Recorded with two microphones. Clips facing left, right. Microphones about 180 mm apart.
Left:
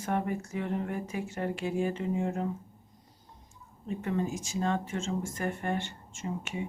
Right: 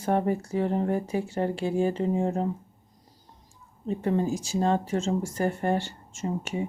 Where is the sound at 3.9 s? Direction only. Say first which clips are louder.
Right 6 dB; 35° right (ahead or behind).